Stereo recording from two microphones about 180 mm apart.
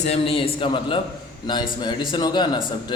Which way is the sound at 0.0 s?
35° left (ahead or behind).